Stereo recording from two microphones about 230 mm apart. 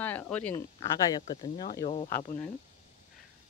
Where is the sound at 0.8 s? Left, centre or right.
Centre.